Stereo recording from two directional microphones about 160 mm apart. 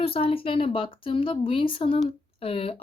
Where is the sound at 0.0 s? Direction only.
35° left (ahead or behind).